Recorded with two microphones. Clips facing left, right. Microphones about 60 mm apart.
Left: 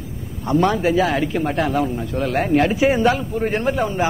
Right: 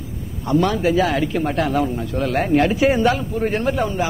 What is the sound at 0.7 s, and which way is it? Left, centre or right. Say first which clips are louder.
A man's voice: even; centre.